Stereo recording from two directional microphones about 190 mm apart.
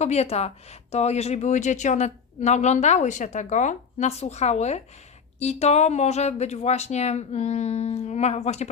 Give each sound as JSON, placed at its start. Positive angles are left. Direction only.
{"t": 0.0, "sound": "speech", "side_deg": 35}